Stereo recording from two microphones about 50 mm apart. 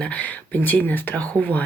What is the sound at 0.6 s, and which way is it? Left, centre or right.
Speech, left.